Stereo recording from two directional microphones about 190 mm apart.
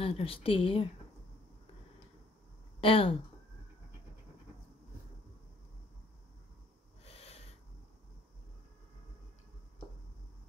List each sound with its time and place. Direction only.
0.0 s a woman's voice: 30° left (ahead or behind)
2.8 s a woman's voice: 30° left (ahead or behind)
7.1 s wheeze: 30° left (ahead or behind)